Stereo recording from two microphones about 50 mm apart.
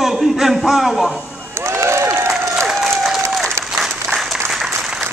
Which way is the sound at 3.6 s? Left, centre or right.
Right.